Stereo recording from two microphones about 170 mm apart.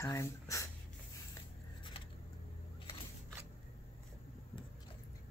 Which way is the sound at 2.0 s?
35° left (ahead or behind).